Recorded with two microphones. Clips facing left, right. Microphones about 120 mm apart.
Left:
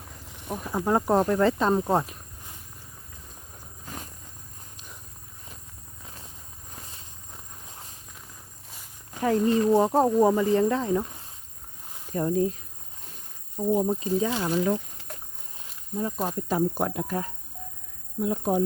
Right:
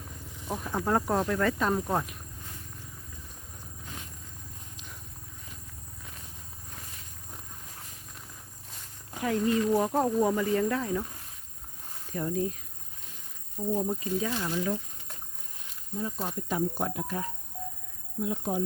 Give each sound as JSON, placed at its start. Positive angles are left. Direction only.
{"t": 0.3, "sound": "snake", "side_deg": 70}
{"t": 0.5, "sound": "speech", "side_deg": 5}
{"t": 0.8, "sound": "speech", "side_deg": 20}
{"t": 1.1, "sound": "speech", "side_deg": 35}
{"t": 3.8, "sound": "insect", "side_deg": 40}
{"t": 9.2, "sound": "speech", "side_deg": 35}
{"t": 13.8, "sound": "speech", "side_deg": 30}
{"t": 14.6, "sound": "a sound", "side_deg": 60}
{"t": 16.0, "sound": "speech", "side_deg": 55}